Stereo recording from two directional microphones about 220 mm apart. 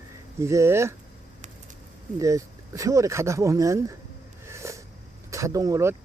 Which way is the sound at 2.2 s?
15° right (ahead or behind).